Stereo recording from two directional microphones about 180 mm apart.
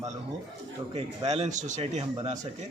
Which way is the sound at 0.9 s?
35° right (ahead or behind).